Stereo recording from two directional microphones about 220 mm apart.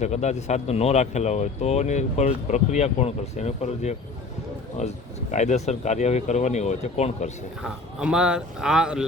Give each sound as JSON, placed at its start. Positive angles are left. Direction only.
{"t": 0.0, "sound": "speech", "side_deg": 30}
{"t": 7.6, "sound": "speech", "side_deg": -5}